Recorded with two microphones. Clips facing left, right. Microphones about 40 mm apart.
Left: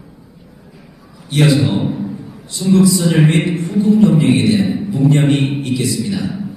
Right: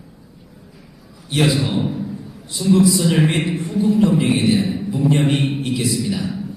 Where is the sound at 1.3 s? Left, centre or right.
Centre.